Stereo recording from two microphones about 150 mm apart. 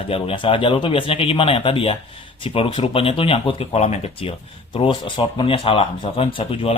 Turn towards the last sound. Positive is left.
turn(degrees=40)  # may be behind; listen again after turning